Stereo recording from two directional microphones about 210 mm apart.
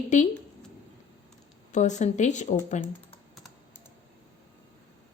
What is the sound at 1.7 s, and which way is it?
A woman's voice, 35° left (ahead or behind).